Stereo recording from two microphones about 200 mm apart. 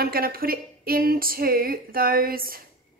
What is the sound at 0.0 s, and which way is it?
A woman's voice, 50° right (ahead or behind).